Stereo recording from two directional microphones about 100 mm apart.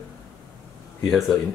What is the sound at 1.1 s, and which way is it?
Speech, centre (ahead or behind).